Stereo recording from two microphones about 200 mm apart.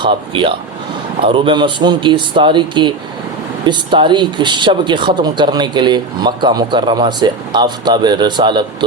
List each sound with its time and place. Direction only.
0.0 s speech: 25° right (ahead or behind)